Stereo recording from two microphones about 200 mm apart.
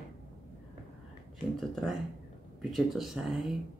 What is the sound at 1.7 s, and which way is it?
Speech, centre (ahead or behind).